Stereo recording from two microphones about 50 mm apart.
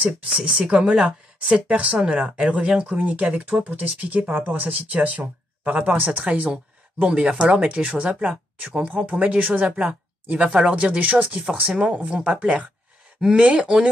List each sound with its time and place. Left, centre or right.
0.3 s speech: right